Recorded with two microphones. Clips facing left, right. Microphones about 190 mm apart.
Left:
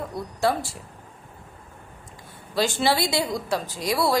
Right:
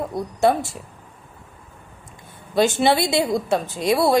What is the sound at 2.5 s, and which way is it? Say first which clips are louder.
A woman's voice: right 5 dB; 20° right (ahead or behind).